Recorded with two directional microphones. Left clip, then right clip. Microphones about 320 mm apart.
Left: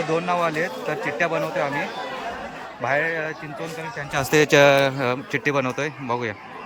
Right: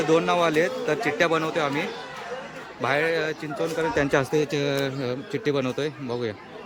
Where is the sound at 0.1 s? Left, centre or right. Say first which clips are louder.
Right 2 dB; centre.